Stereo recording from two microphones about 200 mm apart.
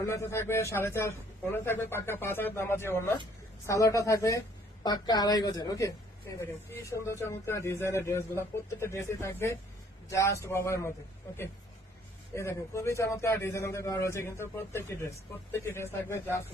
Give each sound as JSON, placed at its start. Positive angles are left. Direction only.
{"t": 0.0, "sound": "a man's voice", "side_deg": 15}
{"t": 12.3, "sound": "a man's voice", "side_deg": 15}